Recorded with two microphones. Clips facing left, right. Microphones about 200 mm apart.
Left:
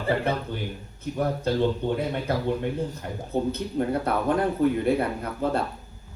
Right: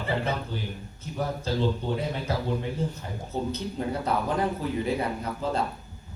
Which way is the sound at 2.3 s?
55° left (ahead or behind).